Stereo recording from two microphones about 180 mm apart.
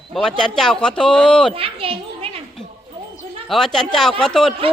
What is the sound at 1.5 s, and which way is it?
Speech, 30° right (ahead or behind).